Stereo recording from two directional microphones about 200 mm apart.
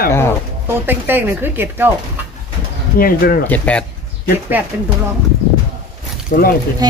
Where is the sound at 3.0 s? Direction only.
50° left (ahead or behind).